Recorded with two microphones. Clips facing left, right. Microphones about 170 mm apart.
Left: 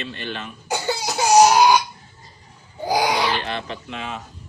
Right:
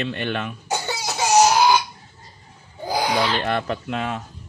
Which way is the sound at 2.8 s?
10° left (ahead or behind).